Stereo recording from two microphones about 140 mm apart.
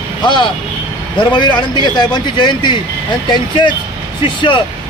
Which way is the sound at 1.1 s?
35° left (ahead or behind).